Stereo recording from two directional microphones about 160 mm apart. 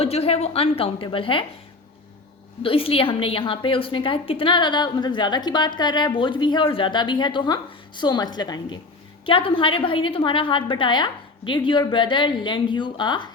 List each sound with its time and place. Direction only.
0.0 s a woman's voice: 40° left (ahead or behind)
2.6 s a woman's voice: 35° left (ahead or behind)